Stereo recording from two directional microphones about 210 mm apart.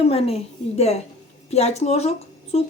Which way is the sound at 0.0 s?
30° left (ahead or behind).